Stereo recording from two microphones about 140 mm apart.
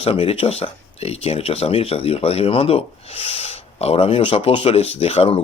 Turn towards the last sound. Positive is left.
turn(degrees=45)  # may be behind; listen again after turning